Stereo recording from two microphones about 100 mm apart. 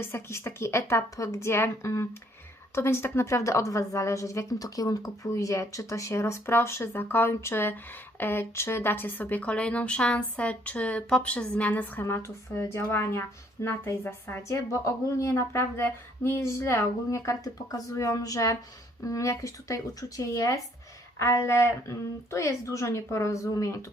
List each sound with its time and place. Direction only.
0.0 s a woman's voice: 25° left (ahead or behind)